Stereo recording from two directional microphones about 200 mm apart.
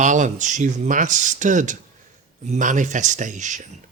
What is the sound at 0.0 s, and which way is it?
Speech, 40° right (ahead or behind).